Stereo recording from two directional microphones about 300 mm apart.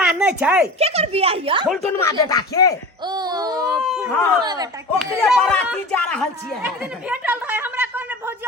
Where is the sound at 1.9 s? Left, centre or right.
Centre.